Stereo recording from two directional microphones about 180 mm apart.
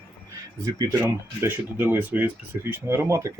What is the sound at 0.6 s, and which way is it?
Speech, 20° right (ahead or behind).